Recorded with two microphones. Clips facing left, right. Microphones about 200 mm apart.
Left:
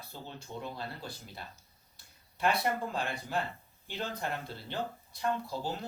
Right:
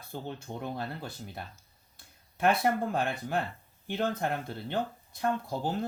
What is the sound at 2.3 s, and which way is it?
Speech, 50° right (ahead or behind).